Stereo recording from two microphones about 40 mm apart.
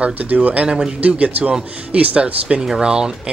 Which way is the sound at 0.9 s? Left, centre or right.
Right.